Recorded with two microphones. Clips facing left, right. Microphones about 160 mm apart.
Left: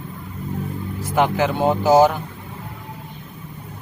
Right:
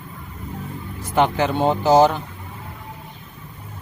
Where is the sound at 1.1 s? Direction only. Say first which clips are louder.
Even; 5° left (ahead or behind).